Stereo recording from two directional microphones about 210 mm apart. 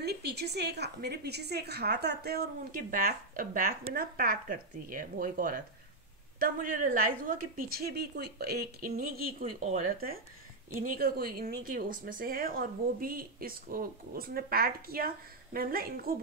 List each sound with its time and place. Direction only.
0.0 s speech: 50° right (ahead or behind)